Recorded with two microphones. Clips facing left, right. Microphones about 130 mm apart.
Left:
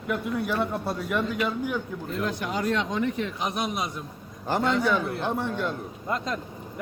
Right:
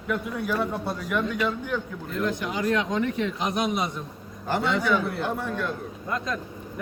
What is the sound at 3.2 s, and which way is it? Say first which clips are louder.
Speech: right 3 dB; centre (ahead or behind).